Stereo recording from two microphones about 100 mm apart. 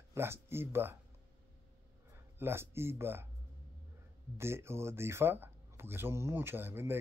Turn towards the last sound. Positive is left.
turn(degrees=-20)  # may be behind; listen again after turning